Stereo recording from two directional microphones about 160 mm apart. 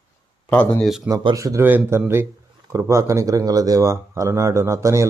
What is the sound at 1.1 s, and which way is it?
Speech, 20° right (ahead or behind).